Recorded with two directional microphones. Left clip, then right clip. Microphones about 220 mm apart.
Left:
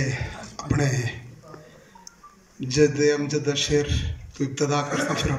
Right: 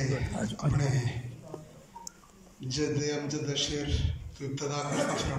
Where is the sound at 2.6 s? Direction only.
45° left (ahead or behind).